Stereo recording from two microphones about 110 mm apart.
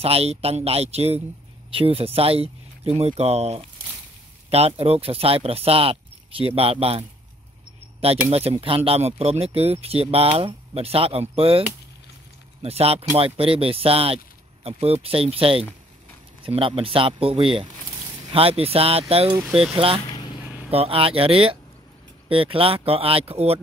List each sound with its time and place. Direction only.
0.0 s speech: 65° right (ahead or behind)
1.7 s speech: 55° right (ahead or behind)
8.3 s speech: 65° right (ahead or behind)
12.6 s speech: 65° right (ahead or behind)
20.1 s vehicle: 45° left (ahead or behind)
20.4 s vehicle: 10° right (ahead or behind)
20.7 s speech: 60° right (ahead or behind)